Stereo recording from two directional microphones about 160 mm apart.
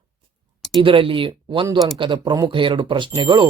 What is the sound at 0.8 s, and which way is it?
Speech, 35° right (ahead or behind).